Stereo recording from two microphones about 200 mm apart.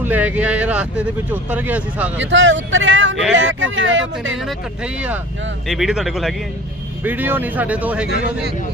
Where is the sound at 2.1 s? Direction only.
65° right (ahead or behind).